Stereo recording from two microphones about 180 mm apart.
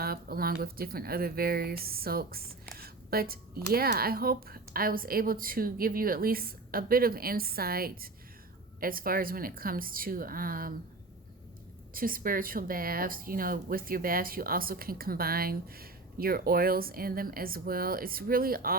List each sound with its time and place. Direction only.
0.0 s a woman's voice: 55° right (ahead or behind)
11.9 s speech: 50° right (ahead or behind)